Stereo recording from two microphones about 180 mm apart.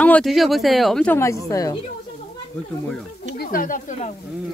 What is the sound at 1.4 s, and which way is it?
Speech, 20° left (ahead or behind).